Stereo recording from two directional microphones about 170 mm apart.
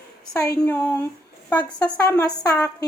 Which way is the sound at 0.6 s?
10° left (ahead or behind).